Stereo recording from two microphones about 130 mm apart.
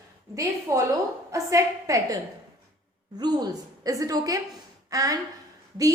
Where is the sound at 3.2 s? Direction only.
30° right (ahead or behind).